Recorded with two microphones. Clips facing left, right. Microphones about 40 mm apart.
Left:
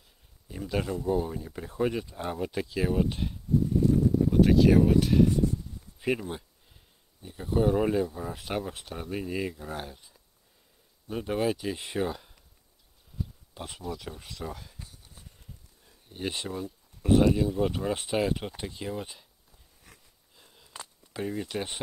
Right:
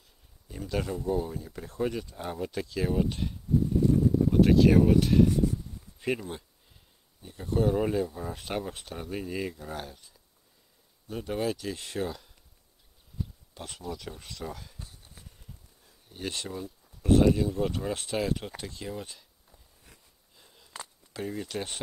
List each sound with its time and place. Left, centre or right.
0.5 s speech: centre
13.6 s speech: centre
15.8 s speech: centre
20.3 s a sound: centre